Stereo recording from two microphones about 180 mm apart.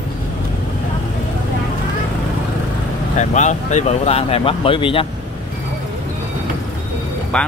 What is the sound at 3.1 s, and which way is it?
Speech, 40° left (ahead or behind).